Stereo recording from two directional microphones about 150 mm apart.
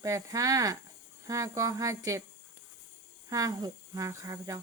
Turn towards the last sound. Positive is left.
turn(degrees=-20)  # may be behind; listen again after turning